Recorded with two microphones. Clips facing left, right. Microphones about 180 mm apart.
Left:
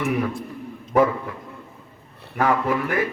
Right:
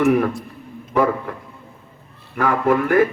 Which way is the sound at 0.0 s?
50° right (ahead or behind).